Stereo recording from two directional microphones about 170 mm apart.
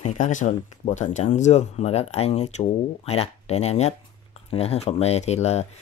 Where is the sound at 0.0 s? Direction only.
45° left (ahead or behind).